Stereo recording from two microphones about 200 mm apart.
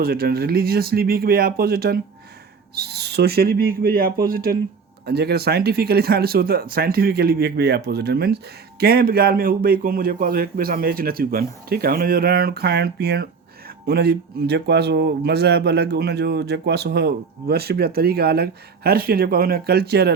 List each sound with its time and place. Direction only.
0.0 s speech: 50° right (ahead or behind)